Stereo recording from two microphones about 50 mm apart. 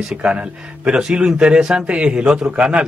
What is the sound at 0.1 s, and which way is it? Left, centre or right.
Speech, right.